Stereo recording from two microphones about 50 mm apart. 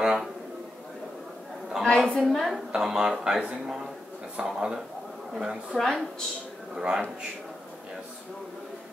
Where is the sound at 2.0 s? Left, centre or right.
Centre.